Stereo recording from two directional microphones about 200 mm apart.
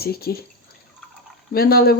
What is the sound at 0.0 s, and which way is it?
Speech, 50° left (ahead or behind).